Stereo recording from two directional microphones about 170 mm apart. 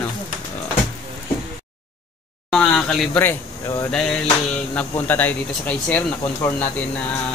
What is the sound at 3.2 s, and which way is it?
Speech, 15° left (ahead or behind).